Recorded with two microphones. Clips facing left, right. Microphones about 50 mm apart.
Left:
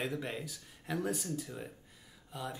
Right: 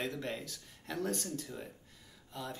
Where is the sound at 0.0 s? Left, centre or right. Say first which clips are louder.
Left 1 dB; centre.